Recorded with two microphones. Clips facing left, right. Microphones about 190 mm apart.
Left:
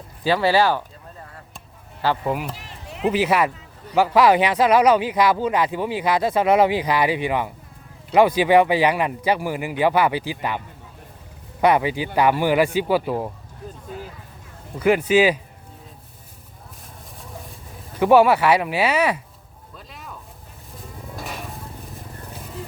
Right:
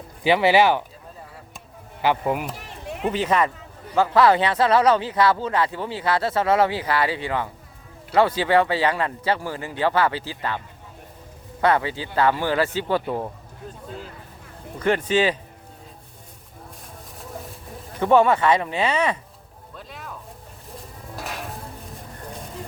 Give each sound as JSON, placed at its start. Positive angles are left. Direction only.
{"t": 0.3, "sound": "speech", "side_deg": -20}
{"t": 2.0, "sound": "speech", "side_deg": -15}
{"t": 3.0, "sound": "speech", "side_deg": 10}
{"t": 11.6, "sound": "speech", "side_deg": 15}
{"t": 14.8, "sound": "speech", "side_deg": 10}
{"t": 18.0, "sound": "speech", "side_deg": 10}
{"t": 19.7, "sound": "a sound", "side_deg": 0}
{"t": 21.2, "sound": "a sound", "side_deg": 0}